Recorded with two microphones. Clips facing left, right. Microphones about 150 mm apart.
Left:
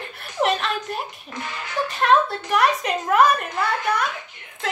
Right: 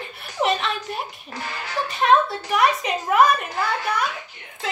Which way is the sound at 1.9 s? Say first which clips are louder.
Right 1 dB; centre (ahead or behind).